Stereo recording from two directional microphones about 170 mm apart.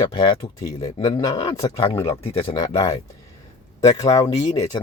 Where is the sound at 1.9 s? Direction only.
15° left (ahead or behind).